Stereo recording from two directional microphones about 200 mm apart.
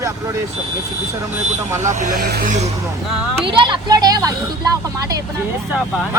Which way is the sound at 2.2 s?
55° right (ahead or behind).